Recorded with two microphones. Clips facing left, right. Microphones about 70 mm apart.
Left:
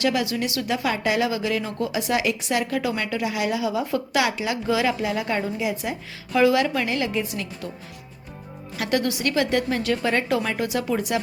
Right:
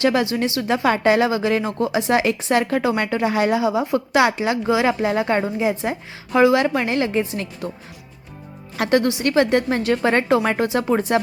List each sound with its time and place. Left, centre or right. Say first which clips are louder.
0.0 s a woman's voice: right 4 dB; right
0.9 s a woman's voice: right 7 dB; right
8.8 s a woman's voice: right 5 dB; right